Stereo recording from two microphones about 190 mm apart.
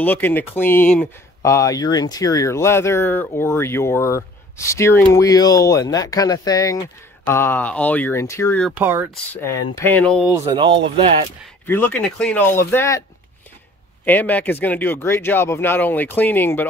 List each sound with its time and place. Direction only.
0.0 s speech: 10° left (ahead or behind)
8.7 s speech: 10° right (ahead or behind)
9.3 s speech: 10° left (ahead or behind)
10.2 s speech: 15° right (ahead or behind)
11.6 s speech: 10° left (ahead or behind)
14.0 s speech: 10° left (ahead or behind)